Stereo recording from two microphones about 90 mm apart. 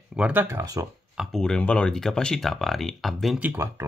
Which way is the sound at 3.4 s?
30° right (ahead or behind).